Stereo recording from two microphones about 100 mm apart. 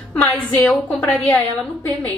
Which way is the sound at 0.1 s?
15° left (ahead or behind).